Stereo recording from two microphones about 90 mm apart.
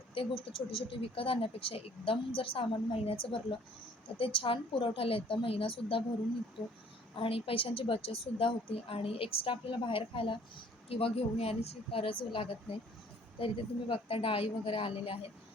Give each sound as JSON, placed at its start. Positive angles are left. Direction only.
{"t": 0.1, "sound": "speech", "side_deg": 85}
{"t": 4.2, "sound": "speech", "side_deg": 85}
{"t": 7.2, "sound": "a woman's voice", "side_deg": 90}
{"t": 10.8, "sound": "a woman's voice", "side_deg": 90}